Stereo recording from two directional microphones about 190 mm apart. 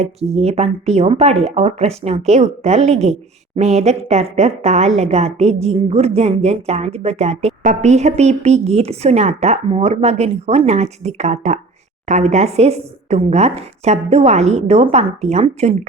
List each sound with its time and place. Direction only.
0.0 s a woman's voice: 35° right (ahead or behind)